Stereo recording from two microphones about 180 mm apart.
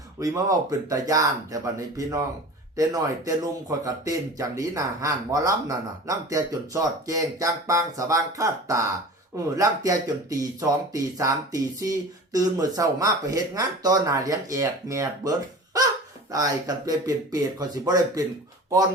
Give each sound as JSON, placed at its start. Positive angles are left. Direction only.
{"t": 0.2, "sound": "speech", "side_deg": -20}